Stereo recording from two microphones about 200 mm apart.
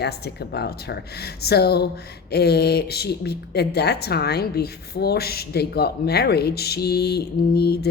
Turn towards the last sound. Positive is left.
turn(degrees=55)  # may be behind; listen again after turning